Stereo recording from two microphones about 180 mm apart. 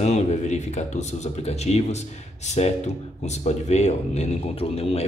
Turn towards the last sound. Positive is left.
turn(degrees=35)  # may be behind; listen again after turning